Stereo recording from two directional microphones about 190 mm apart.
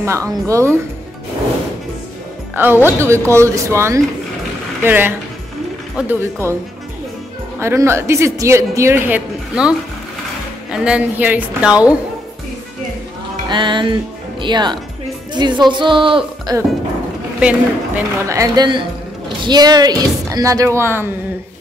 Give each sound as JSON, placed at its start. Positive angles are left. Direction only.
{"t": 0.0, "sound": "speech", "side_deg": -15}
{"t": 2.5, "sound": "speech", "side_deg": -10}
{"t": 7.5, "sound": "speech", "side_deg": -15}
{"t": 13.5, "sound": "speech", "side_deg": -25}
{"t": 17.4, "sound": "speech", "side_deg": -5}